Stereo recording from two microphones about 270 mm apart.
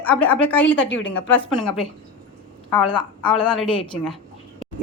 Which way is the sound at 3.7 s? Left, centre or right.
Centre.